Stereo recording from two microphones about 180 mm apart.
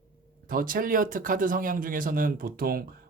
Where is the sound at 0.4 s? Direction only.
50° right (ahead or behind).